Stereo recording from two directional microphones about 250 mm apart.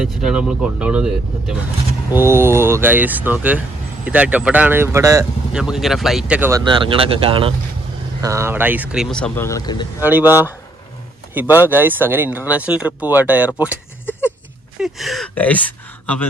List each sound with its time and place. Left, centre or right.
0.0 s speech: centre
6.7 s speech: centre
10.0 s speech: centre
14.8 s speech: centre